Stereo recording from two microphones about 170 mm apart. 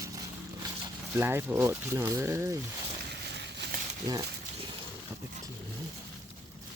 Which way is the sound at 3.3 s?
85° right.